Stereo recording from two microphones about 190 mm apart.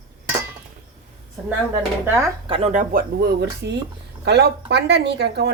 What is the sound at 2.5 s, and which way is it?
Speech, 35° right (ahead or behind).